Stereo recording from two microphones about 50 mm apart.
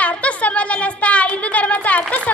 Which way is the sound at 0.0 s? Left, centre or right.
Left.